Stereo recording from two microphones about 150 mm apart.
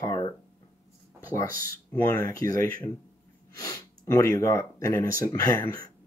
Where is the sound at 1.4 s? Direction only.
65° right (ahead or behind).